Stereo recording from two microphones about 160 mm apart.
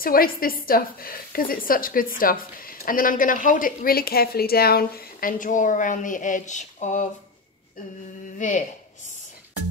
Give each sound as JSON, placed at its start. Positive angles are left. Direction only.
{"t": 0.0, "sound": "a woman's voice", "side_deg": 65}
{"t": 8.4, "sound": "speech", "side_deg": 50}